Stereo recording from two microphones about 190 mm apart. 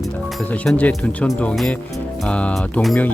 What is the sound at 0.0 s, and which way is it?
Speech, centre (ahead or behind).